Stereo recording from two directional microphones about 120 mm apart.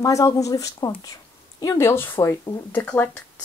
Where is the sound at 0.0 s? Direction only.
30° left (ahead or behind).